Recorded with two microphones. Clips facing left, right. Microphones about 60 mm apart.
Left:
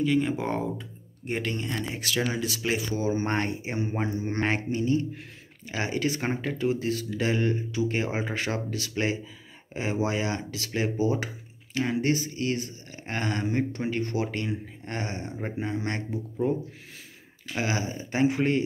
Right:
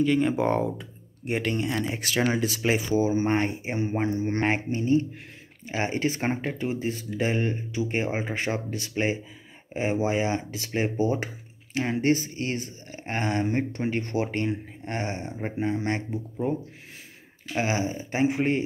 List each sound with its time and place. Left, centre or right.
0.0 s speech: centre
2.0 s speech: right